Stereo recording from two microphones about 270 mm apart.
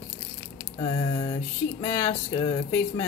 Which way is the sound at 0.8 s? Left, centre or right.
Centre.